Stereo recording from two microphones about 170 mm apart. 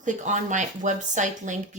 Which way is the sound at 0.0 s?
45° right (ahead or behind).